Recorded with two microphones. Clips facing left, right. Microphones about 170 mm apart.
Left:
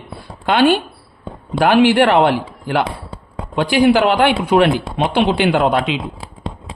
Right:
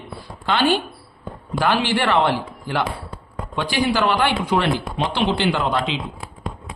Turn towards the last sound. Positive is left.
turn(degrees=60)  # may be behind; listen again after turning